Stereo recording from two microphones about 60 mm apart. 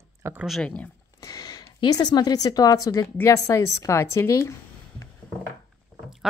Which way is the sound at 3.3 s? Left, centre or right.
Left.